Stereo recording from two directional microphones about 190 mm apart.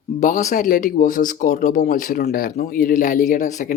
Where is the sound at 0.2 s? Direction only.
40° left (ahead or behind).